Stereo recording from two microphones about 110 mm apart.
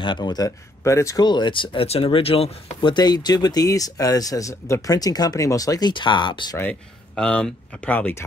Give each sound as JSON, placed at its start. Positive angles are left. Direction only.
{"t": 0.0, "sound": "speech", "side_deg": 45}
{"t": 0.8, "sound": "speech", "side_deg": 25}
{"t": 1.2, "sound": "speech", "side_deg": 45}
{"t": 2.9, "sound": "speech", "side_deg": 40}
{"t": 6.6, "sound": "speech", "side_deg": 10}